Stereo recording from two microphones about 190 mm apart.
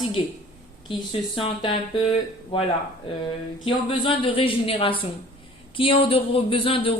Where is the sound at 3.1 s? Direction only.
30° left (ahead or behind).